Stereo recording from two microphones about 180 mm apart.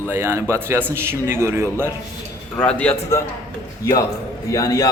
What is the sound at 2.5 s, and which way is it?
A man's voice, 5° left (ahead or behind).